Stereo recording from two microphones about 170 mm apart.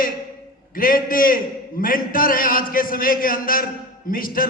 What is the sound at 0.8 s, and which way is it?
A man's voice, 55° left (ahead or behind).